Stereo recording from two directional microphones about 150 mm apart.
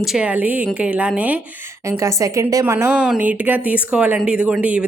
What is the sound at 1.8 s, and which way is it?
A woman's voice, 20° right (ahead or behind).